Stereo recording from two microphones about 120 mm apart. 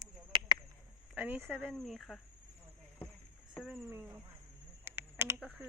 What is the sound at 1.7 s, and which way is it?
Speech, 5° left (ahead or behind).